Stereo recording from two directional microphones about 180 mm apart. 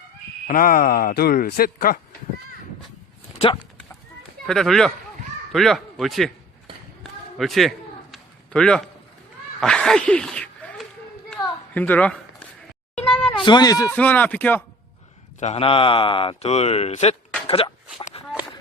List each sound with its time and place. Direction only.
0.4 s speech: 50° left (ahead or behind)
3.3 s speech: 30° left (ahead or behind)
4.4 s a man's voice: centre (ahead or behind)
7.0 s a sound: centre (ahead or behind)
13.3 s speech: 25° left (ahead or behind)
13.9 s speech: 10° left (ahead or behind)
15.4 s a man's voice: 35° left (ahead or behind)